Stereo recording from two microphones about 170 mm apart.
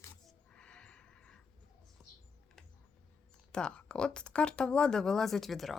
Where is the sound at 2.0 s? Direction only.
Centre (ahead or behind).